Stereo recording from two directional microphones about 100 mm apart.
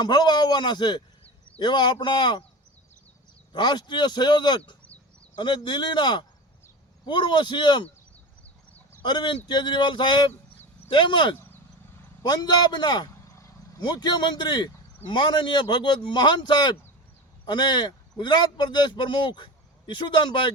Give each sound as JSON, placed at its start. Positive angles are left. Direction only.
{"t": 0.0, "sound": "a man's voice", "side_deg": 45}
{"t": 3.5, "sound": "a man's voice", "side_deg": 50}
{"t": 9.0, "sound": "a man's voice", "side_deg": 50}
{"t": 12.2, "sound": "a man's voice", "side_deg": 45}